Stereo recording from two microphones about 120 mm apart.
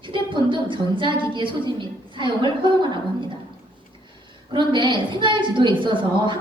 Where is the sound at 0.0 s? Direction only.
40° right (ahead or behind).